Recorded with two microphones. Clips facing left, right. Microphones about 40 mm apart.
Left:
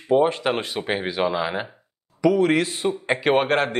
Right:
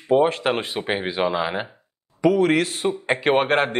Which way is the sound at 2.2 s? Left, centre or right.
Right.